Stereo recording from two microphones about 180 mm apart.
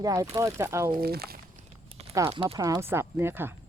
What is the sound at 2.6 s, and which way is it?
Speech, 20° right (ahead or behind).